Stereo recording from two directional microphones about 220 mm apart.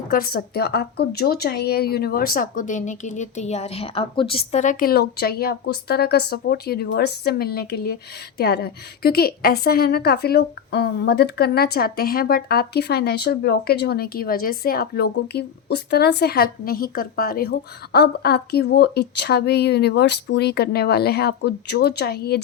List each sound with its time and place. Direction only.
0.1 s a woman's voice: 45° left (ahead or behind)